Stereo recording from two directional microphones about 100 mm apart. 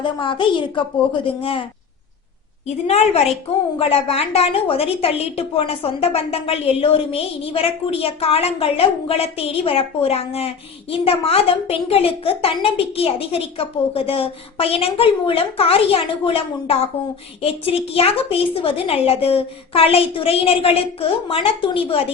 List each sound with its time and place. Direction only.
0.0 s a woman's voice: 55° left (ahead or behind)
2.8 s a woman's voice: 90° left
3.8 s a woman's voice: 75° left (ahead or behind)